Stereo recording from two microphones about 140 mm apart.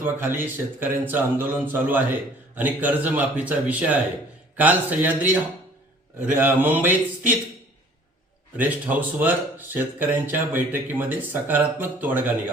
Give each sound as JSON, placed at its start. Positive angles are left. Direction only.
{"t": 0.0, "sound": "speech", "side_deg": -15}
{"t": 8.5, "sound": "speech", "side_deg": -10}